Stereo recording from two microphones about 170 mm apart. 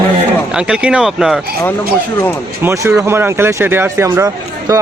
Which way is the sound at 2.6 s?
15° right (ahead or behind).